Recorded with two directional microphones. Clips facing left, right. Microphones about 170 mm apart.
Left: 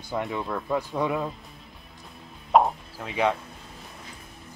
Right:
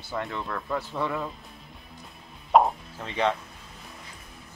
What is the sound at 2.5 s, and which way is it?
Plop, centre (ahead or behind).